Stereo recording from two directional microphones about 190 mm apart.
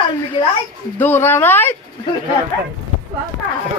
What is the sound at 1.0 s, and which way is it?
Speech, 10° left (ahead or behind).